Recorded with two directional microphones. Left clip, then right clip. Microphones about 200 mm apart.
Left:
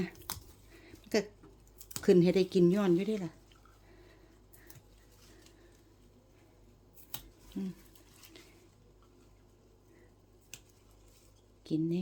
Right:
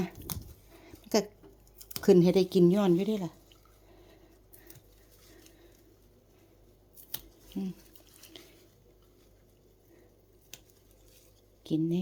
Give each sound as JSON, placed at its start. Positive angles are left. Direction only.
{"t": 0.8, "sound": "a sound", "side_deg": -15}
{"t": 1.8, "sound": "speech", "side_deg": -10}
{"t": 7.1, "sound": "scissors", "side_deg": -10}
{"t": 11.6, "sound": "speech", "side_deg": -15}